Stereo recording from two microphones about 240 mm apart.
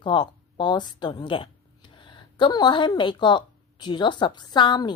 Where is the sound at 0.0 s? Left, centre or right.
Centre.